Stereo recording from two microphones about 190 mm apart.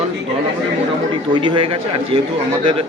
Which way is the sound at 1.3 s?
25° right (ahead or behind).